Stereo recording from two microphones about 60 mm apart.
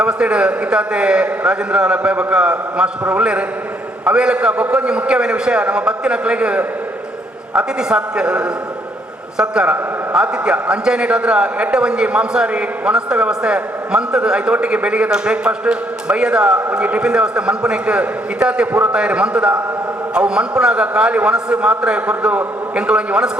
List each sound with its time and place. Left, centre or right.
0.0 s a man's voice: centre